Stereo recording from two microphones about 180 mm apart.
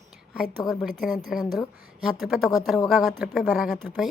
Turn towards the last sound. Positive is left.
turn(degrees=0)  # may be behind; listen again after turning